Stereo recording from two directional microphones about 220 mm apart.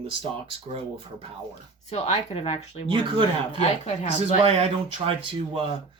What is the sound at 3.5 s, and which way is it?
Speech, 30° left (ahead or behind).